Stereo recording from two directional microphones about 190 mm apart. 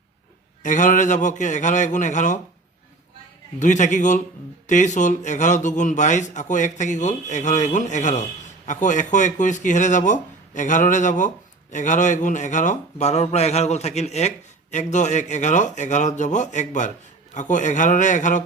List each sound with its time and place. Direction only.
0.6 s a man's voice: 45° left (ahead or behind)
3.6 s a man's voice: 40° left (ahead or behind)